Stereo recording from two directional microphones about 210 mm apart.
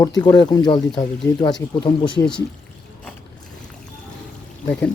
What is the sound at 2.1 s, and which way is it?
Speech, 5° left (ahead or behind).